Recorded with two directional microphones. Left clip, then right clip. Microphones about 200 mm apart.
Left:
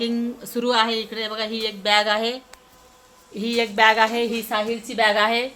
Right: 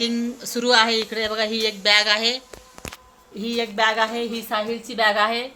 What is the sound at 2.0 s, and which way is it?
Speech, 25° left (ahead or behind).